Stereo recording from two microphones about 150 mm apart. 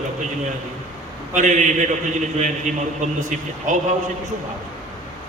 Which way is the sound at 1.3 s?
55° right (ahead or behind).